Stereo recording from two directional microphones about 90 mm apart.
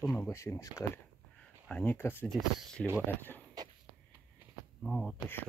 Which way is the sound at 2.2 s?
5° left (ahead or behind).